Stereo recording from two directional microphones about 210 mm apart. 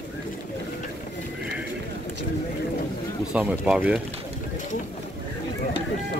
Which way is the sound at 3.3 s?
5° right (ahead or behind).